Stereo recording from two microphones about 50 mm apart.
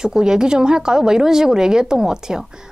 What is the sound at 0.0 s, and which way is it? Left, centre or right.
A woman's voice, centre.